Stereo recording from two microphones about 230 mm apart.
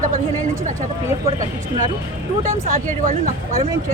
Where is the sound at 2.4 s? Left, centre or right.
Right.